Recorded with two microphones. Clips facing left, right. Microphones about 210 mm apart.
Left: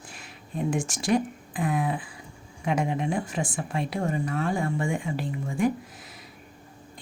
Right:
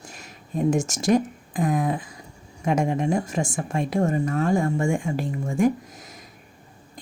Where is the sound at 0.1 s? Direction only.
40° right (ahead or behind).